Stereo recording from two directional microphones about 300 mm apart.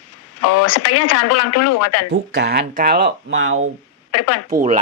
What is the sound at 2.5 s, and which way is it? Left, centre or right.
Speech, right.